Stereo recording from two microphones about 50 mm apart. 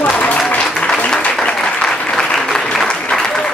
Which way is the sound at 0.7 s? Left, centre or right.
Centre.